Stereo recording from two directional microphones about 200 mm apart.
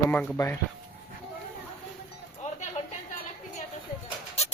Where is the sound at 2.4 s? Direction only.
30° left (ahead or behind).